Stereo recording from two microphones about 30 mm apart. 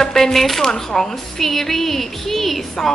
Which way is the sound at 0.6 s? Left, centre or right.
Centre.